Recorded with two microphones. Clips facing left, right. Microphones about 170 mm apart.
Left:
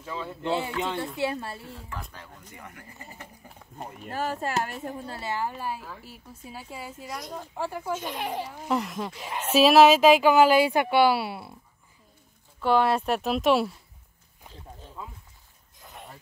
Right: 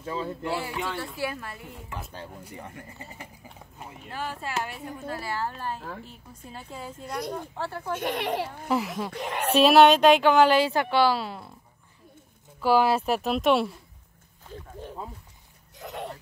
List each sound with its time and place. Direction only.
0.0 s speech: 35° right (ahead or behind)
0.4 s speech: 20° left (ahead or behind)
1.6 s speech: 20° right (ahead or behind)
3.7 s speech: 45° left (ahead or behind)
4.9 s speech: 30° left (ahead or behind); by 7.9 s 10° left (ahead or behind)
7.9 s a child's voice: 70° right (ahead or behind)
8.6 s speech: centre (ahead or behind)
9.1 s a child's voice: 70° right (ahead or behind)
9.5 s speech: centre (ahead or behind)
12.5 s speech: 5° right (ahead or behind)
14.5 s wild animals: 65° right (ahead or behind)
15.8 s a sound: 80° right